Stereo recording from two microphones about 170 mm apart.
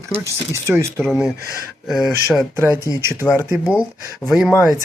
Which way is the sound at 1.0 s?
Centre (ahead or behind).